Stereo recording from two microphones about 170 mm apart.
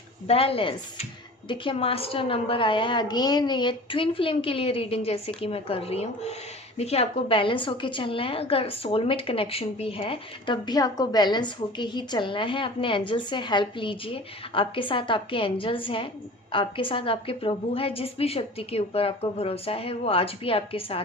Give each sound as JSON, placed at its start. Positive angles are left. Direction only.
{"t": 0.3, "sound": "a woman's voice", "side_deg": 35}